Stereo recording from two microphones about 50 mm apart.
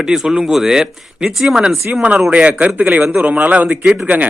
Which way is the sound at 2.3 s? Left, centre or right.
Right.